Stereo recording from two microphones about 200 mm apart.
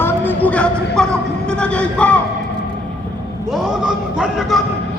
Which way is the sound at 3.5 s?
5° right (ahead or behind).